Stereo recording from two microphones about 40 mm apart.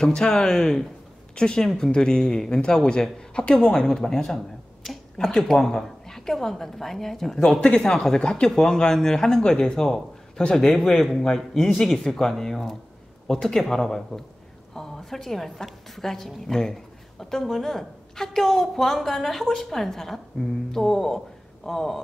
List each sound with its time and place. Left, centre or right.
0.0 s a woman's voice: centre
3.8 s a woman's voice: centre